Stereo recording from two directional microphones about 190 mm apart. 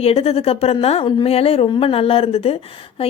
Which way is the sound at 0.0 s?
30° left (ahead or behind).